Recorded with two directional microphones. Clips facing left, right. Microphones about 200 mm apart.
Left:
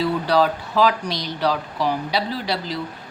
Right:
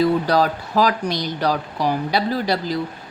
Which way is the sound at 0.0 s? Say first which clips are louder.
Right 2 dB; 45° right (ahead or behind).